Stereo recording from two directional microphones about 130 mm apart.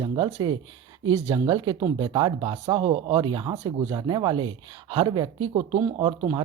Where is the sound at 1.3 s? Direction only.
35° right (ahead or behind).